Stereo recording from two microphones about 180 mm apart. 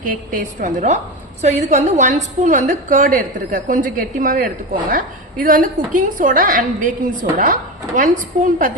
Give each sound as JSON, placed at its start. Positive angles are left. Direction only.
{"t": 0.0, "sound": "a woman's voice", "side_deg": -50}